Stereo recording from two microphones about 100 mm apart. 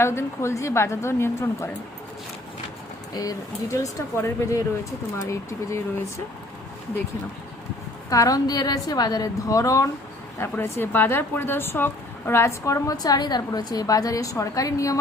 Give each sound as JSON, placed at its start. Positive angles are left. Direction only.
{"t": 0.0, "sound": "a woman's voice", "side_deg": 25}
{"t": 3.2, "sound": "speech", "side_deg": 35}
{"t": 8.1, "sound": "speech", "side_deg": 35}
{"t": 10.5, "sound": "speech", "side_deg": 20}